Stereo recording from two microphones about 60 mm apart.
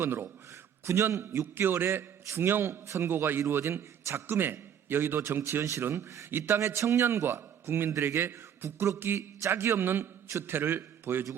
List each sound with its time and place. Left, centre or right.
0.0 s a man's voice: right
0.9 s a man's voice: right
1.4 s a man's voice: right
2.8 s speech: right
3.1 s a man's voice: right
5.9 s speech: right
6.3 s a man's voice: right
6.6 s a man's voice: right